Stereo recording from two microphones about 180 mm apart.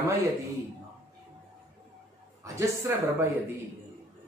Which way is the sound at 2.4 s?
15° right (ahead or behind).